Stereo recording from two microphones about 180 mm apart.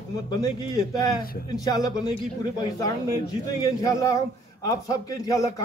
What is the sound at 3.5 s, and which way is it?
A man's voice, 20° left (ahead or behind).